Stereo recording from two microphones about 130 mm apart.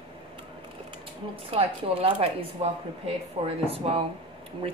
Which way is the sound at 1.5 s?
50° right (ahead or behind).